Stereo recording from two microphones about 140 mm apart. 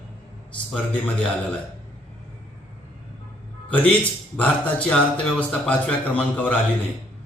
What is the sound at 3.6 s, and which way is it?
Speech, 10° left (ahead or behind).